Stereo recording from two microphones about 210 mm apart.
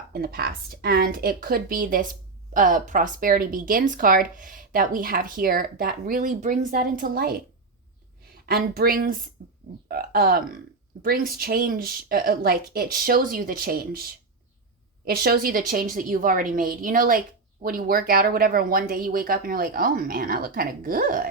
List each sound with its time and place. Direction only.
0.1 s speech: 45° right (ahead or behind)
8.4 s speech: 45° right (ahead or behind)